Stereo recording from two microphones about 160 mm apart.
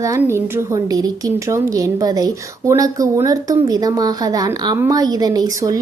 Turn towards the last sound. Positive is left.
turn(degrees=-20)  # may be behind; listen again after turning